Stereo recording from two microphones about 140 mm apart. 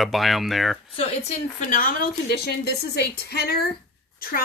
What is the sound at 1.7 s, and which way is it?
Speech, 85° left.